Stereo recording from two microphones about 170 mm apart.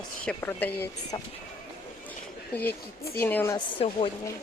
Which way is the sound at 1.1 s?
25° left (ahead or behind).